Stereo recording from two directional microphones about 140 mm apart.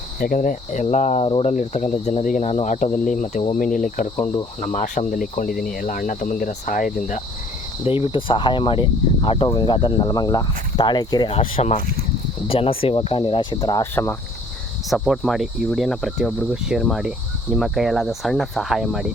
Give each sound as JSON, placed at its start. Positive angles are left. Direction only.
{"t": 0.2, "sound": "speech", "side_deg": 80}
{"t": 1.2, "sound": "speech", "side_deg": 45}
{"t": 1.5, "sound": "speech", "side_deg": 60}
{"t": 7.9, "sound": "speech", "side_deg": 40}
{"t": 11.3, "sound": "speech", "side_deg": 45}
{"t": 13.9, "sound": "speech", "side_deg": 15}
{"t": 14.8, "sound": "speech", "side_deg": 0}